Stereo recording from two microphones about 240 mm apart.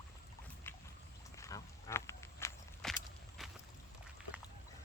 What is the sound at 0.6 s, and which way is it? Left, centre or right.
Boat, centre.